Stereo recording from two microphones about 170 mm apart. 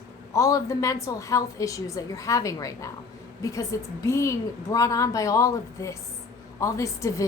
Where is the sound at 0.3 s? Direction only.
20° left (ahead or behind).